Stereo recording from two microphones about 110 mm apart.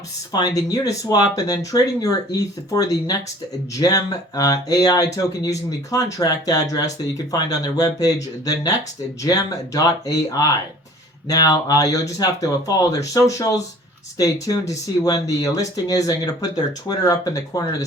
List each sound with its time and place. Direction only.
0.3 s speech: 35° left (ahead or behind)